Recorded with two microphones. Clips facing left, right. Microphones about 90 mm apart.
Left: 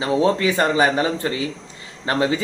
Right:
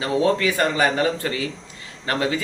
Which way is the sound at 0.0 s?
25° left (ahead or behind).